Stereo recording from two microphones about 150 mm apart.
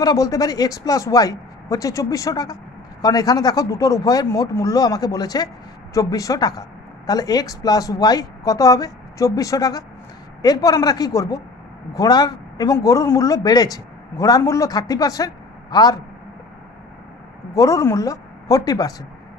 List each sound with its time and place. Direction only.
0.0 s a man's voice: 25° left (ahead or behind)
17.6 s a man's voice: 20° left (ahead or behind)